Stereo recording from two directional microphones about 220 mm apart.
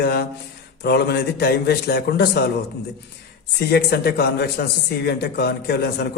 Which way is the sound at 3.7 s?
45° left (ahead or behind).